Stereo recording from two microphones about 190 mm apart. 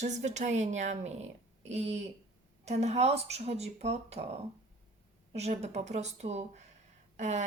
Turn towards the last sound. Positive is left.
turn(degrees=-40)  # may be behind; listen again after turning